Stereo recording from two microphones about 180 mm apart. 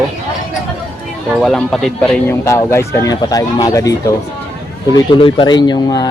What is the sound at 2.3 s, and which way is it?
Speech, 15° left (ahead or behind).